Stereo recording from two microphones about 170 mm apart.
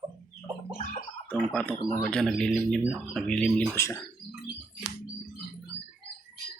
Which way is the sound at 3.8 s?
15° left (ahead or behind).